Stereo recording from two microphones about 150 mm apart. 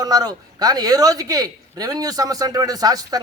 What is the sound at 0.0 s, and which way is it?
Speech, 25° right (ahead or behind).